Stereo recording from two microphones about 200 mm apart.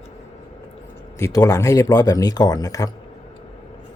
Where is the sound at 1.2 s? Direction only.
15° left (ahead or behind).